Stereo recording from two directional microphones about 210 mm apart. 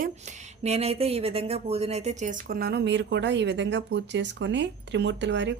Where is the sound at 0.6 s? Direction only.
30° right (ahead or behind); by 5.5 s 55° right (ahead or behind).